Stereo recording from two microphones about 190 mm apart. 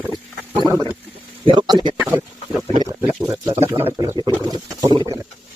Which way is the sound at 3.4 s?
15° right (ahead or behind).